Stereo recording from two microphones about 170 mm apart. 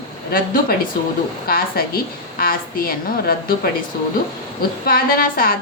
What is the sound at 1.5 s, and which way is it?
A woman's voice, 60° left (ahead or behind).